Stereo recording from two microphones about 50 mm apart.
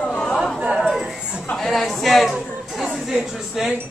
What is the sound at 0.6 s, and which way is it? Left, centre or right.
Speech, centre.